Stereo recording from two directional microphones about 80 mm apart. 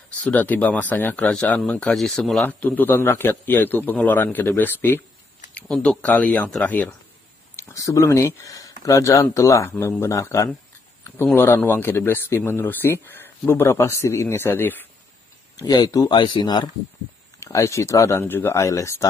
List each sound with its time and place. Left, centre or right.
0.2 s a man's voice: centre
1.2 s speech: centre
2.4 s a man's voice: centre
5.9 s speech: centre
6.6 s a man's voice: centre
7.5 s speech: left
11.3 s a man's voice: left
15.5 s speech: left
16.1 s speech: left
17.4 s speech: left
18.2 s a man's voice: left
18.5 s speech: left